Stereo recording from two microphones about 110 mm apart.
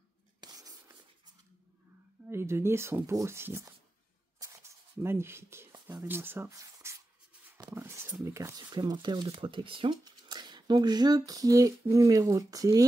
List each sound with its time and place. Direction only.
0.4 s a sound: 35° right (ahead or behind)
2.2 s speech: 25° right (ahead or behind)
4.4 s a sound: 25° right (ahead or behind)
6.0 s speech: 20° right (ahead or behind)
6.5 s writing: 30° right (ahead or behind)
7.7 s speech: 20° right (ahead or behind)
8.6 s speech: 40° right (ahead or behind)
10.0 s speech: 40° right (ahead or behind)